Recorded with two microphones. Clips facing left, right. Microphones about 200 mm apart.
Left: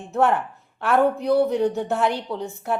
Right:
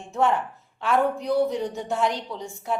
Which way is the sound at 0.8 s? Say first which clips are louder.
Left 3 dB; 60° left (ahead or behind).